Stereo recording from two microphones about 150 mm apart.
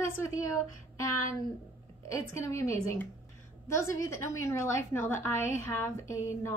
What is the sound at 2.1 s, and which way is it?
A woman's voice, 20° left (ahead or behind).